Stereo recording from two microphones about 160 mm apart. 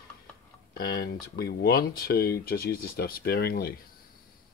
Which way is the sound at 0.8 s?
80° left.